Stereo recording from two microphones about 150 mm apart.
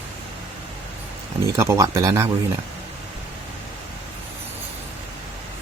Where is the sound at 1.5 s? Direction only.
20° right (ahead or behind).